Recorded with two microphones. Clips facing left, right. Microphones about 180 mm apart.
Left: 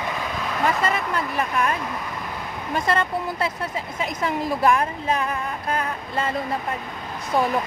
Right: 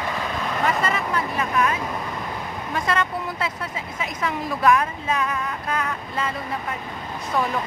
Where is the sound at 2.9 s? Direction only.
35° left (ahead or behind).